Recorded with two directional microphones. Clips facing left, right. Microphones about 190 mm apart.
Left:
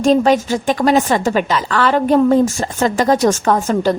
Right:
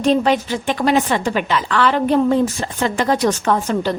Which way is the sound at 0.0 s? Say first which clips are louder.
Left 3 dB; 45° left (ahead or behind).